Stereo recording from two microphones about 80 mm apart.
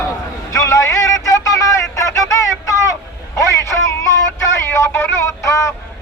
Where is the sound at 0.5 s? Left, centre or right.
Left.